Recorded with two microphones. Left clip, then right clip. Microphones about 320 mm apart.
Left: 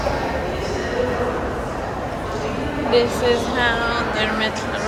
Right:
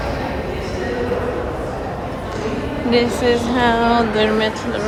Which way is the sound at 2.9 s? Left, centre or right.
Right.